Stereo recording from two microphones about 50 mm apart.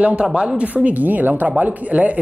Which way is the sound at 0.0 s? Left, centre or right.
Right.